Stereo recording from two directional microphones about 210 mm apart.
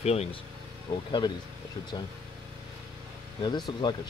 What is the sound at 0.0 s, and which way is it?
Speech, 30° left (ahead or behind).